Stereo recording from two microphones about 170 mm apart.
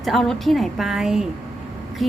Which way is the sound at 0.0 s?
Centre (ahead or behind).